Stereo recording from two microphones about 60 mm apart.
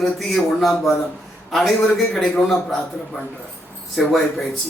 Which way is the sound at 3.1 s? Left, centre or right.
Left.